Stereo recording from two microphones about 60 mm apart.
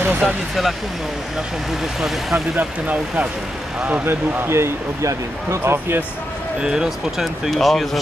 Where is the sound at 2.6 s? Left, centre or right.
Right.